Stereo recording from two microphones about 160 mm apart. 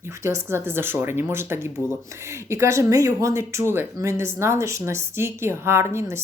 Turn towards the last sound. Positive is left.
turn(degrees=-15)  # may be behind; listen again after turning